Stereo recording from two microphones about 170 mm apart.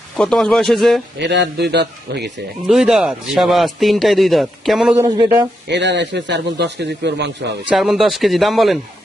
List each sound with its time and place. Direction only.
0.2 s speech: 5° left (ahead or behind)
1.2 s a man's voice: 90° right
2.6 s speech: centre (ahead or behind)
5.0 s speech: 25° right (ahead or behind)
5.6 s speech: 90° right
7.7 s speech: centre (ahead or behind)